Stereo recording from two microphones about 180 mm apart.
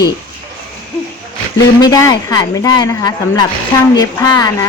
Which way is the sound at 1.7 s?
20° left (ahead or behind).